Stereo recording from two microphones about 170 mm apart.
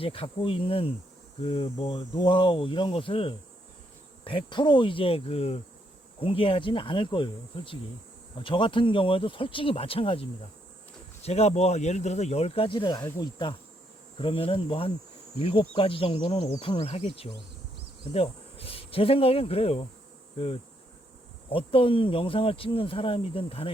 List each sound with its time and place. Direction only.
0.0 s speech: 35° left (ahead or behind)
21.5 s speech: 30° left (ahead or behind)